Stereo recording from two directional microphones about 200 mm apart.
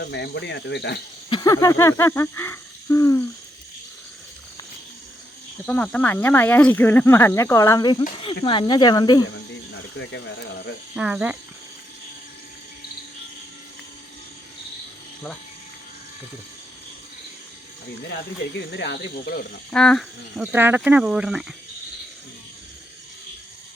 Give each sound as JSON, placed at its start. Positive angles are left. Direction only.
{"t": 0.0, "sound": "speech", "side_deg": 60}
{"t": 1.3, "sound": "a sound", "side_deg": 20}
{"t": 5.6, "sound": "speech", "side_deg": 5}
{"t": 10.0, "sound": "speech", "side_deg": 60}
{"t": 10.9, "sound": "speech", "side_deg": -5}
{"t": 18.5, "sound": "speech", "side_deg": 60}
{"t": 19.7, "sound": "speech", "side_deg": 5}